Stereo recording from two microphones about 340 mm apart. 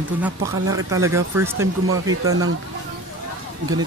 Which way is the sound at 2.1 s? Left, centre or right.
Right.